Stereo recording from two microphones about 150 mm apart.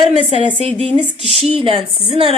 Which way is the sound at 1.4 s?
40° right (ahead or behind).